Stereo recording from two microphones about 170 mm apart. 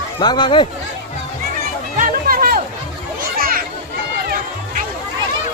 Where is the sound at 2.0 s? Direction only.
60° right (ahead or behind).